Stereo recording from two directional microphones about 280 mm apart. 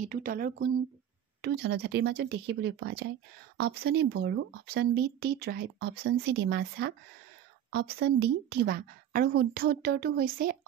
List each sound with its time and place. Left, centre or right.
0.0 s speech: right